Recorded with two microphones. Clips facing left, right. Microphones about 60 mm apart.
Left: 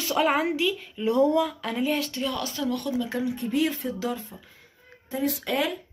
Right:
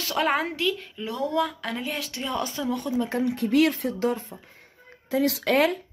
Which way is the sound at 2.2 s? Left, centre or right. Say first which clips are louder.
Even; right.